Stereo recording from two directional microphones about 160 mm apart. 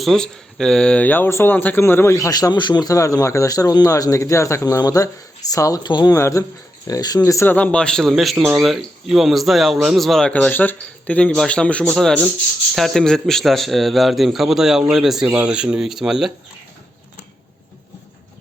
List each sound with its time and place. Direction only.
0.0 s speech: 5° left (ahead or behind)